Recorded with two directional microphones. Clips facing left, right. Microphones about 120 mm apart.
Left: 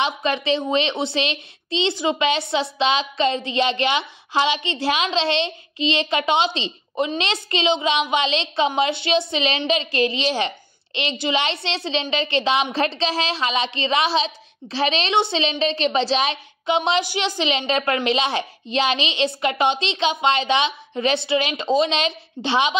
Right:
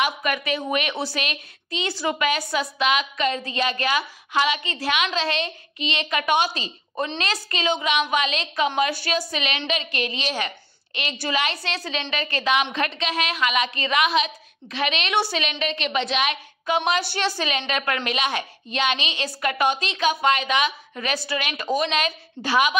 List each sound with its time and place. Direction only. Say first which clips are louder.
0.0 s a woman's voice: left 2 dB; 25° left (ahead or behind)